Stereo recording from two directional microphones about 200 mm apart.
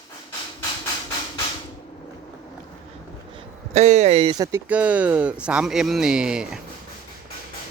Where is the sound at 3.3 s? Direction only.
35° right (ahead or behind).